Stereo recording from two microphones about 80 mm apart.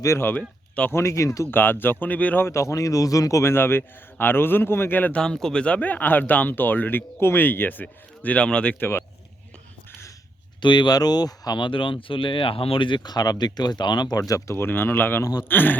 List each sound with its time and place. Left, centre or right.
0.2 s speech: left
1.5 s speech: left
2.5 s speech: left
5.2 s speech: centre
8.8 s speech: left
10.6 s speech: left
11.6 s speech: left
15.2 s speech: left
15.4 s speech: left